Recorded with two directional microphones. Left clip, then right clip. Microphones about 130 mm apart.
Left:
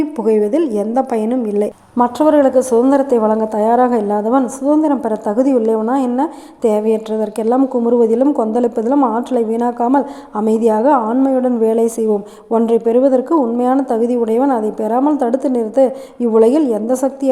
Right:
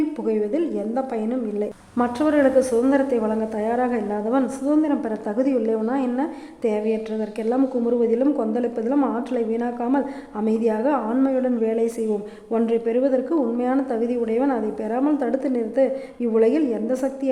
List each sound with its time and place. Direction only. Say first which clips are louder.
0.3 s a woman's voice: left 11 dB; 40° left (ahead or behind)
2.0 s a woman's voice: left 8 dB; 30° left (ahead or behind)